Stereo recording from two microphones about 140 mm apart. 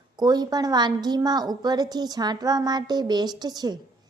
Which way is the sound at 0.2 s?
30° right (ahead or behind).